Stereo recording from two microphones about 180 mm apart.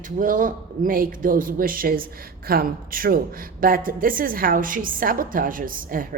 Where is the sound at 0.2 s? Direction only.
50° right (ahead or behind).